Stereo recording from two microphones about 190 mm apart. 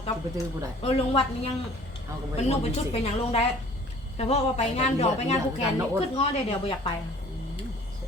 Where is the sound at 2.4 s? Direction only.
35° left (ahead or behind).